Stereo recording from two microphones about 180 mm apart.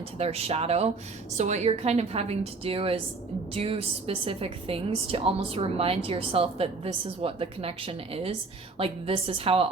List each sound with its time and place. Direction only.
0.2 s a woman's voice: 35° right (ahead or behind)